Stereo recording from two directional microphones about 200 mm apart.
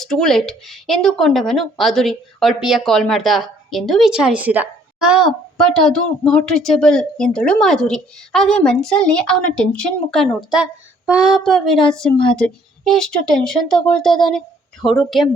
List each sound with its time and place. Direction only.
0.0 s speech: centre (ahead or behind)
12.1 s a woman's voice: 25° left (ahead or behind)
12.4 s speech: centre (ahead or behind)